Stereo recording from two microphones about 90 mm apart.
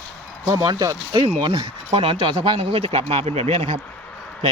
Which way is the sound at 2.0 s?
80° right.